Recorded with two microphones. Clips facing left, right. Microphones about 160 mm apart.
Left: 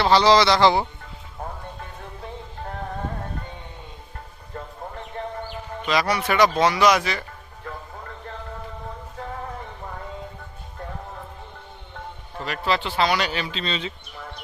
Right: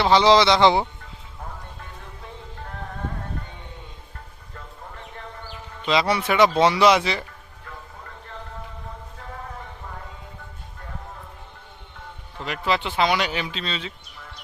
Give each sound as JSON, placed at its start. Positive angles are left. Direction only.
{"t": 0.0, "sound": "speech", "side_deg": -20}
{"t": 5.8, "sound": "speech", "side_deg": -25}
{"t": 12.5, "sound": "speech", "side_deg": -15}